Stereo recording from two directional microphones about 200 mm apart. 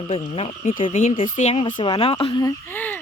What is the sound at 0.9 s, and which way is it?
Speech, 40° left (ahead or behind).